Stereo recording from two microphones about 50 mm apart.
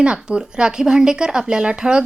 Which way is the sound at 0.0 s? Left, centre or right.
Centre.